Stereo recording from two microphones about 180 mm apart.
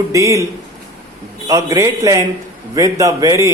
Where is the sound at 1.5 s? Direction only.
20° right (ahead or behind).